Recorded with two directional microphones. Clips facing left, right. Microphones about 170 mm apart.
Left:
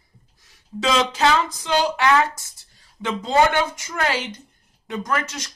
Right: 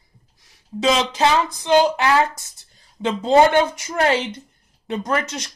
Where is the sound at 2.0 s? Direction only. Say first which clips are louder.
Even; 30° right (ahead or behind).